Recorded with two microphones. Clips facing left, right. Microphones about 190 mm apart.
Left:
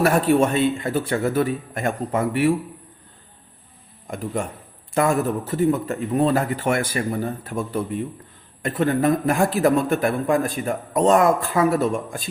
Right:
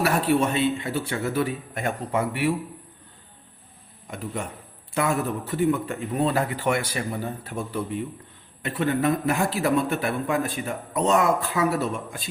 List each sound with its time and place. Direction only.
0.0 s a man's voice: 50° left (ahead or behind)
4.0 s a man's voice: 50° left (ahead or behind)